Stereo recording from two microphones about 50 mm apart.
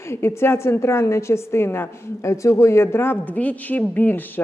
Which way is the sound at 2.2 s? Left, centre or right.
Left.